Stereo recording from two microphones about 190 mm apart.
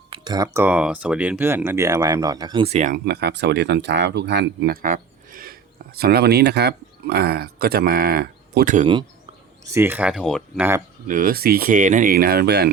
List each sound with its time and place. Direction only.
0.1 s speech: 20° right (ahead or behind)
2.6 s speech: 35° right (ahead or behind)
2.9 s speech: 60° right (ahead or behind)
9.6 s speech: 15° right (ahead or behind)
11.1 s speech: 50° right (ahead or behind)